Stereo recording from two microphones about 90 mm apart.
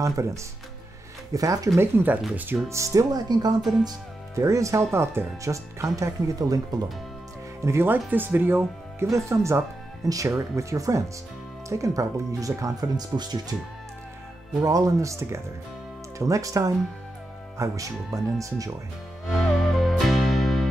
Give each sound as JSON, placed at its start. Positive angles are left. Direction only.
{"t": 0.0, "sound": "speech", "side_deg": -35}
{"t": 1.8, "sound": "speech", "side_deg": -30}
{"t": 2.8, "sound": "speech", "side_deg": -40}
{"t": 4.4, "sound": "speech", "side_deg": -35}
{"t": 7.6, "sound": "speech", "side_deg": -25}
{"t": 9.0, "sound": "speech", "side_deg": -35}
{"t": 14.6, "sound": "speech", "side_deg": -40}
{"t": 19.4, "sound": "music", "side_deg": 0}